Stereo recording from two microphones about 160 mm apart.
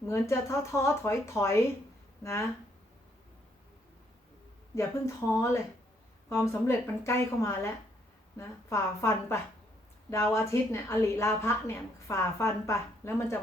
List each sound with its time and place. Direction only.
0.1 s a woman's voice: 15° left (ahead or behind)
4.7 s a woman's voice: 20° left (ahead or behind)